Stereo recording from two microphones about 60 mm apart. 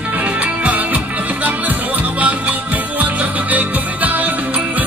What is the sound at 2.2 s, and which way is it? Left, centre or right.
Music, right.